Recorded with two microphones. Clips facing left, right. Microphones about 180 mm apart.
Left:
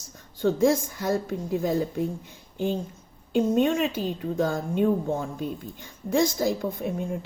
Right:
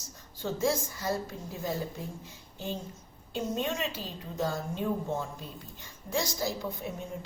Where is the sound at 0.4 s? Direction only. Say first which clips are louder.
Left 8 dB; 55° left (ahead or behind).